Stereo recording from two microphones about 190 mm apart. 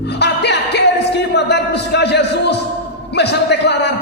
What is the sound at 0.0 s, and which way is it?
Music, 60° left (ahead or behind).